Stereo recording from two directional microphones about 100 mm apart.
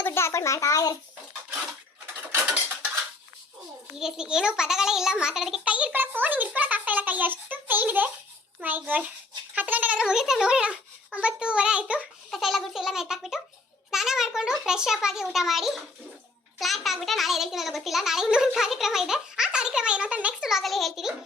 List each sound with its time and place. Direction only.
0.0 s speech: 25° left (ahead or behind)
3.9 s a child's voice: 5° right (ahead or behind)